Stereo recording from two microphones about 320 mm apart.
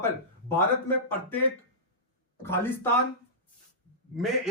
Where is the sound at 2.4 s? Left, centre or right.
Centre.